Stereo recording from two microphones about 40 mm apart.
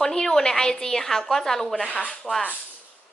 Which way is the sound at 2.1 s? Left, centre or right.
Centre.